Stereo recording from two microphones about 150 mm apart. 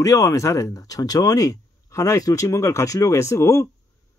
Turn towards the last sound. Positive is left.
turn(degrees=20)  # may be behind; listen again after turning